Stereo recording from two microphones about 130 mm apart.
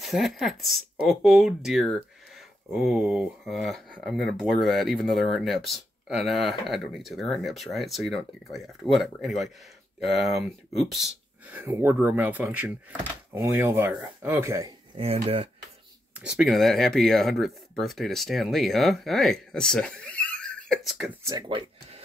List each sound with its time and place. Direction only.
0.0 s speech: centre (ahead or behind)
11.5 s speech: 15° right (ahead or behind)
16.2 s speech: centre (ahead or behind)
21.2 s speech: 25° right (ahead or behind)